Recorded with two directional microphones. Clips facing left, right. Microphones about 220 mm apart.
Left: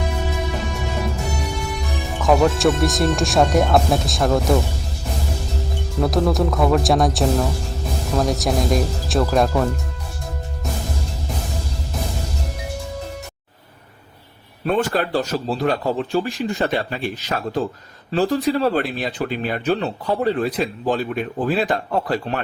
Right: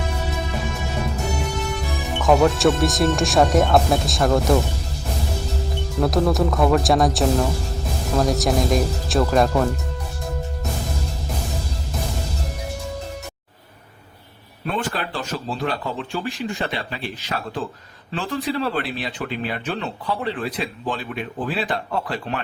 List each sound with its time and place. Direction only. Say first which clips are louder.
2.1 s speech: even; centre (ahead or behind)
6.0 s speech: even; centre (ahead or behind)
14.7 s speech: left 7 dB; 45° left (ahead or behind)